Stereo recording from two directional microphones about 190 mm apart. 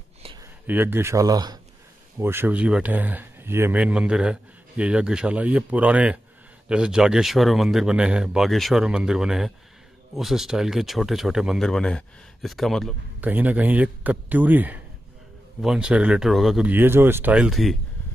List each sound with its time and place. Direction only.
0.4 s speech: 10° right (ahead or behind)